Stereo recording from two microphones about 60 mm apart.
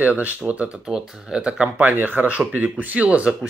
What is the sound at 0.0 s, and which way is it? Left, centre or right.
Speech, right.